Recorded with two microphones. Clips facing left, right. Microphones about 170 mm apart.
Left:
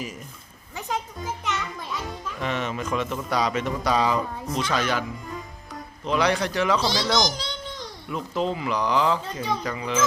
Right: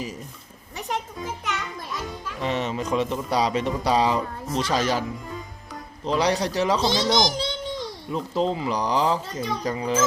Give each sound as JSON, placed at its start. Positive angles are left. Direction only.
{"t": 2.4, "sound": "speech", "side_deg": -30}
{"t": 6.1, "sound": "speech", "side_deg": -35}
{"t": 6.7, "sound": "a child's voice", "side_deg": -20}